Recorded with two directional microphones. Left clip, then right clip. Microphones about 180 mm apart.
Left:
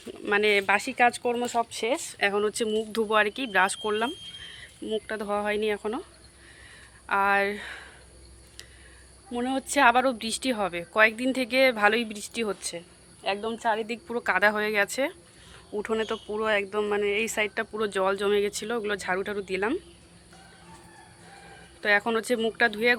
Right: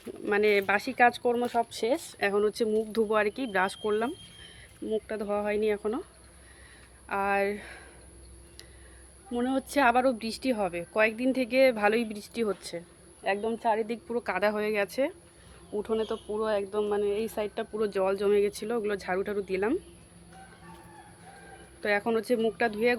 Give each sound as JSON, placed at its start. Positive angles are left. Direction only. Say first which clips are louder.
{"t": 0.3, "sound": "speech", "louder": "left 2 dB", "side_deg": 0}
{"t": 7.1, "sound": "speech", "louder": "left 4 dB", "side_deg": 0}
{"t": 9.3, "sound": "speech", "louder": "left 1 dB", "side_deg": -5}
{"t": 16.5, "sound": "speech", "louder": "left 4 dB", "side_deg": 40}
{"t": 17.5, "sound": "speech", "louder": "left 2 dB", "side_deg": 5}
{"t": 21.8, "sound": "speech", "louder": "left 4 dB", "side_deg": 0}